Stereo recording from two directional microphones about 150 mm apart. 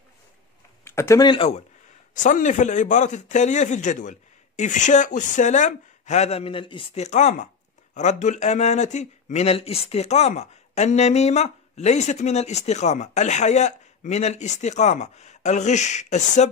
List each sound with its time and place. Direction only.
0.8 s a sound: 15° left (ahead or behind)
1.2 s speech: 30° left (ahead or behind)
2.1 s speech: 55° left (ahead or behind)